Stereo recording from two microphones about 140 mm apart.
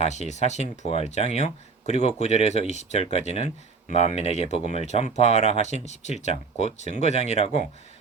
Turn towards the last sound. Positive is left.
turn(degrees=50)  # may be behind; listen again after turning